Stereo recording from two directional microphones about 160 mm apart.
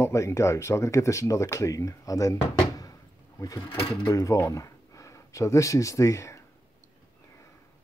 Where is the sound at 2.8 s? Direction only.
20° left (ahead or behind).